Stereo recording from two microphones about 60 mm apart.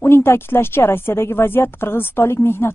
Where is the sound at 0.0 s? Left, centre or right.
Left.